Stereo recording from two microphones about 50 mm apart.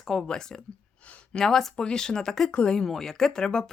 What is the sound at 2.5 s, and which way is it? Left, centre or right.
Speech, left.